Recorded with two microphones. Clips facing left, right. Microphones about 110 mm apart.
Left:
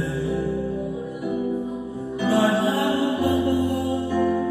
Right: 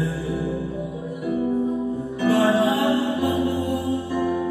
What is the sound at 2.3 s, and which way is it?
Music, centre (ahead or behind).